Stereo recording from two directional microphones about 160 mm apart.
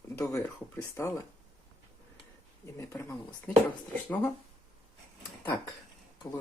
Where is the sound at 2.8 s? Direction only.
15° left (ahead or behind).